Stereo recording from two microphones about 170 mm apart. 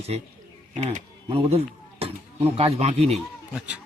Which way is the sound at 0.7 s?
45° right (ahead or behind).